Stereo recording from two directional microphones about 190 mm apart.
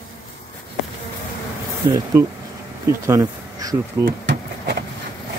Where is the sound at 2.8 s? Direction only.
15° right (ahead or behind).